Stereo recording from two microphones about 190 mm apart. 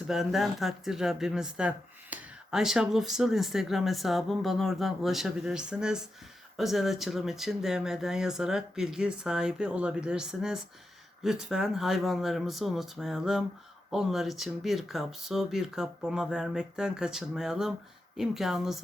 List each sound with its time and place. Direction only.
0.1 s speech: centre (ahead or behind)